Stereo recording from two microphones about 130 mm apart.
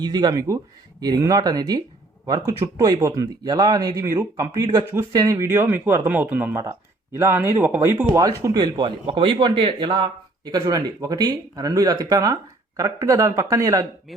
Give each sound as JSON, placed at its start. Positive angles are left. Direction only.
{"t": 0.0, "sound": "speech", "side_deg": -30}